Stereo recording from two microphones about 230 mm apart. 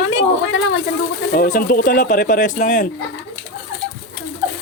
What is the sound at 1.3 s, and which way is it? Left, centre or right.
Speech, left.